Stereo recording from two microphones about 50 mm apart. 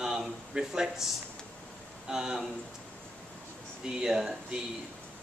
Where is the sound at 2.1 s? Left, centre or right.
Centre.